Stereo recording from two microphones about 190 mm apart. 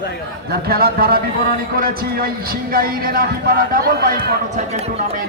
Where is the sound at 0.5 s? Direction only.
55° right (ahead or behind).